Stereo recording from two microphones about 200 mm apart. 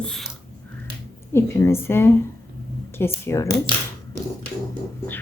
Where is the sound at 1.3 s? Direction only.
10° left (ahead or behind).